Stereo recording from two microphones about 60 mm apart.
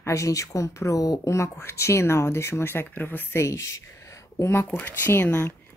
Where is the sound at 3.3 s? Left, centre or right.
Left.